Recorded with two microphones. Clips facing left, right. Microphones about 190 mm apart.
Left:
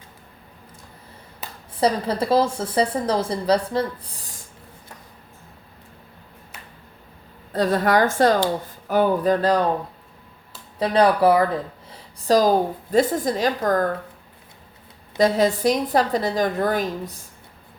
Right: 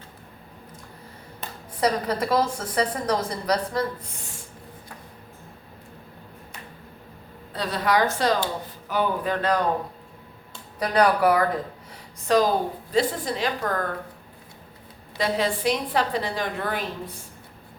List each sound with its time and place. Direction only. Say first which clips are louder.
1.8 s a woman's voice: left 3 dB; 30° left (ahead or behind)
7.5 s a woman's voice: left 5 dB; 45° left (ahead or behind)
10.8 s a woman's voice: left 3 dB; 30° left (ahead or behind)
15.2 s a woman's voice: left 6 dB; 40° left (ahead or behind)